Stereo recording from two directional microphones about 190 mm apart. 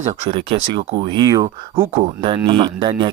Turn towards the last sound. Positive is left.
turn(degrees=-25)  # may be behind; listen again after turning